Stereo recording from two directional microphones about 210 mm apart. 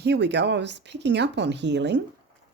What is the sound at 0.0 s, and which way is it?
Speech, 55° right (ahead or behind).